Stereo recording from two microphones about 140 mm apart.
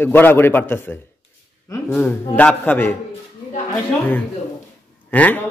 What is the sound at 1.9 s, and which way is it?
Speech, 10° left (ahead or behind).